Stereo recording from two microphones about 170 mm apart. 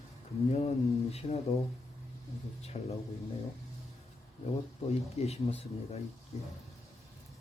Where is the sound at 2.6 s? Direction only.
40° left (ahead or behind).